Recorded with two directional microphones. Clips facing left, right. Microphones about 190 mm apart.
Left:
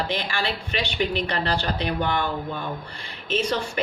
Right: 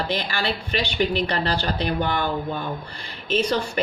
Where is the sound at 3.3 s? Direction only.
35° right (ahead or behind).